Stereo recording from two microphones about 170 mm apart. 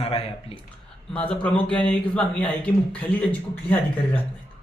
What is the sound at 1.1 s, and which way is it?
A man's voice, 5° left (ahead or behind).